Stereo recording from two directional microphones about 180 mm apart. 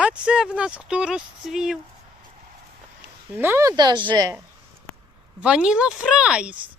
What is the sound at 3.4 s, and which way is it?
Speech, 15° right (ahead or behind).